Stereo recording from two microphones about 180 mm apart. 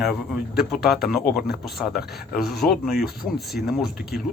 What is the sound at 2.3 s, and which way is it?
Speech, centre (ahead or behind).